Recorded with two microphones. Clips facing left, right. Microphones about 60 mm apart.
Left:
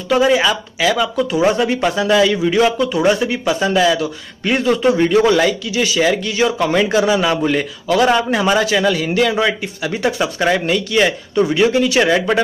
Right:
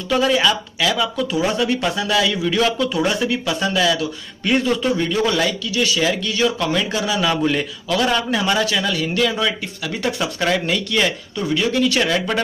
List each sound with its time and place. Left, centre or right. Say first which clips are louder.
0.1 s speech: left 3 dB; centre
2.3 s speech: left 4 dB; left
2.9 s speech: left 5 dB; centre
3.6 s speech: left 4 dB; left
4.5 s speech: left 4 dB; centre
4.9 s speech: left 6 dB; left
6.7 s speech: left 7 dB; left
7.2 s speech: left 3 dB; centre
8.9 s speech: left 4 dB; centre
9.2 s speech: left 4 dB; left
10.0 s speech: left 4 dB; centre